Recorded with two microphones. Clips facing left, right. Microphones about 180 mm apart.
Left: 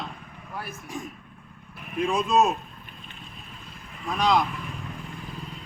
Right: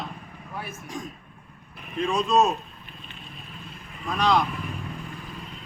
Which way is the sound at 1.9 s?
15° left (ahead or behind).